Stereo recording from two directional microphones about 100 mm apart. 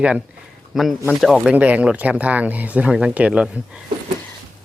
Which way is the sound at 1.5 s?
15° right (ahead or behind).